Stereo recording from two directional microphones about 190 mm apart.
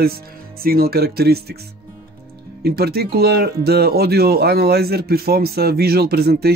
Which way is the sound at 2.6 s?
55° right (ahead or behind).